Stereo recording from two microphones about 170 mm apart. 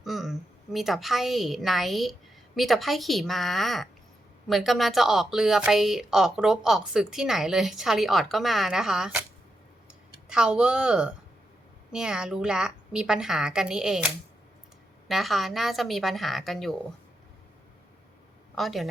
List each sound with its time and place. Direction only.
0.0 s a woman's voice: centre (ahead or behind)
10.2 s a woman's voice: 5° right (ahead or behind)
18.5 s speech: centre (ahead or behind)